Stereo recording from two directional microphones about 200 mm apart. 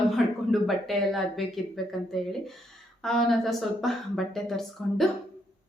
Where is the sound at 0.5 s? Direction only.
Centre (ahead or behind).